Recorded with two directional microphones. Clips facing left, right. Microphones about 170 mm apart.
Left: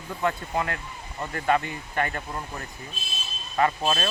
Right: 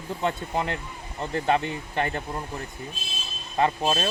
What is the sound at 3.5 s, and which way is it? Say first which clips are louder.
Speech: even; 25° right (ahead or behind).